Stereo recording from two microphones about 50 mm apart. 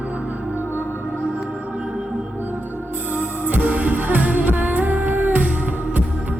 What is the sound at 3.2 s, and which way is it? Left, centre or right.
Music, right.